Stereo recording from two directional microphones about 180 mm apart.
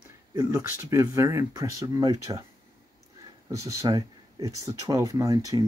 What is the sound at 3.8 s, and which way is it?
Speech, 20° right (ahead or behind).